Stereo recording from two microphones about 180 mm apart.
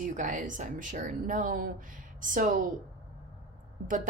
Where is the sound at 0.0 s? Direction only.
45° right (ahead or behind).